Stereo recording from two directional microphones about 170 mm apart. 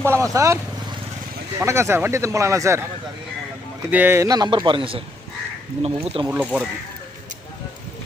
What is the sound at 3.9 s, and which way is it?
Speech, 10° right (ahead or behind).